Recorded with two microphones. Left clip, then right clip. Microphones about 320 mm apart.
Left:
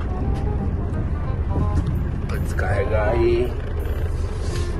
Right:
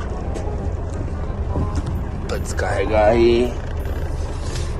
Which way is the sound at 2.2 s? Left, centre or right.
Centre.